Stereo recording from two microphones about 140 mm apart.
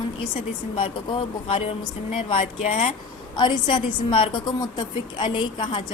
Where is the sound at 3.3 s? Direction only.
35° left (ahead or behind).